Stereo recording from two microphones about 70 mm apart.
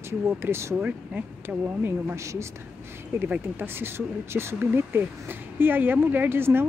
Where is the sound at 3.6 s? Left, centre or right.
Right.